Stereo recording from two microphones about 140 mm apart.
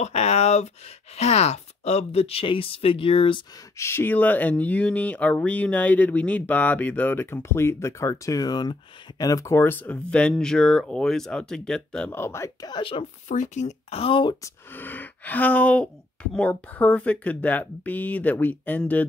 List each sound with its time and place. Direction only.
0.0 s speech: 50° left (ahead or behind)
3.7 s speech: 20° left (ahead or behind)
12.1 s speech: 20° left (ahead or behind)
12.7 s speech: 40° left (ahead or behind)
13.3 s speech: 60° left (ahead or behind); by 14.3 s 40° left (ahead or behind)
14.4 s speech: 15° left (ahead or behind)